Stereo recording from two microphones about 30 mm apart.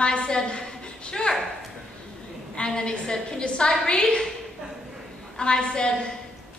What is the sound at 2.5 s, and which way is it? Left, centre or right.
A woman's voice, left.